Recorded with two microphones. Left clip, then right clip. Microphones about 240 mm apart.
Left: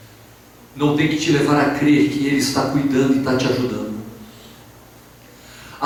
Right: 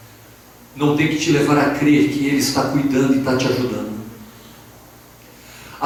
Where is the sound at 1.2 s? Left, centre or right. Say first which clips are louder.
Right 1 dB; centre.